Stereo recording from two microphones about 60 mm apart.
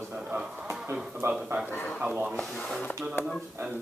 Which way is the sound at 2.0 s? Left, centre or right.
Right.